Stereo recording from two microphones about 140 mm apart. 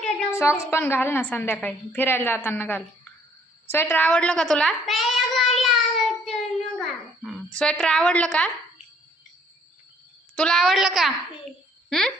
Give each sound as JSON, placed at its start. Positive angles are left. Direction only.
{"t": 0.3, "sound": "a woman's voice", "side_deg": 20}
{"t": 6.2, "sound": "a sound", "side_deg": 0}
{"t": 10.3, "sound": "a woman's voice", "side_deg": 5}